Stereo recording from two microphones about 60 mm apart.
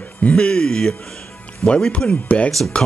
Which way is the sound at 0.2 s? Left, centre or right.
Centre.